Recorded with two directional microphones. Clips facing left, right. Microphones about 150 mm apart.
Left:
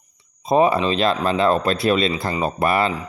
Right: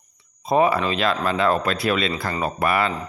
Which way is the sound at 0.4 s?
25° left (ahead or behind).